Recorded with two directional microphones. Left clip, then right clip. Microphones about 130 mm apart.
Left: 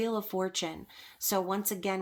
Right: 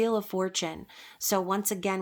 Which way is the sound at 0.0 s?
30° right (ahead or behind).